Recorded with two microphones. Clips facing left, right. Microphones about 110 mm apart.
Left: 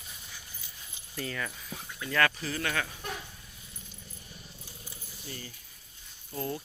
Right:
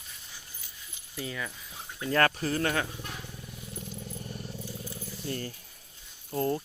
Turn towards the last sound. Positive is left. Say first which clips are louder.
# right 6 dB
turn(degrees=-40)  # may be behind; listen again after turning